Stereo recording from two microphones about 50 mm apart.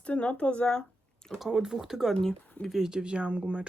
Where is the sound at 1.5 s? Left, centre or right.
Centre.